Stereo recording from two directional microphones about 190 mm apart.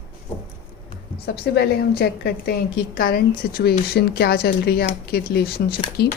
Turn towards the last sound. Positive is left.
turn(degrees=60)  # may be behind; listen again after turning